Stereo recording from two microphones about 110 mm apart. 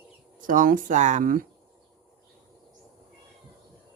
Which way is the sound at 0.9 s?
90° right.